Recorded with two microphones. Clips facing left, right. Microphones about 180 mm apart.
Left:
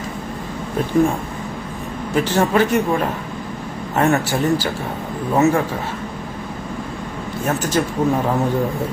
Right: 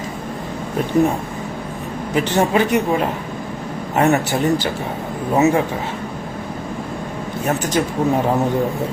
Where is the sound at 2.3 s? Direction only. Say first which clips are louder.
Even; 15° right (ahead or behind).